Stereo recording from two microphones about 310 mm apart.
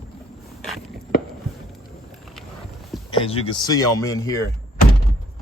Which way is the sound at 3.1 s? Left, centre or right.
Centre.